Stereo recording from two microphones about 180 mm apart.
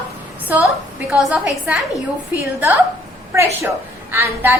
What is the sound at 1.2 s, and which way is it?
Speech, 5° right (ahead or behind).